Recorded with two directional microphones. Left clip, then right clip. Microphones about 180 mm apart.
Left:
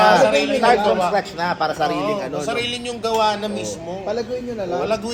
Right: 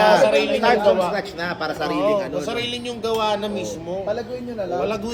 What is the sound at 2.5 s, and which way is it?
Speech, 20° right (ahead or behind).